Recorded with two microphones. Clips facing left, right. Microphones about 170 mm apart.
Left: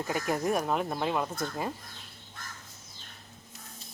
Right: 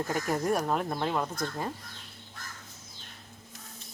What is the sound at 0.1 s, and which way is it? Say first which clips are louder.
Speech: left 1 dB; 5° left (ahead or behind).